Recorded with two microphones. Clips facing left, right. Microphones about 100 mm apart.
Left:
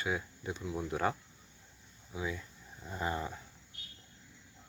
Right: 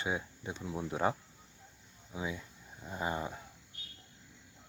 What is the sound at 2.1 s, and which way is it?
Speech, 20° right (ahead or behind).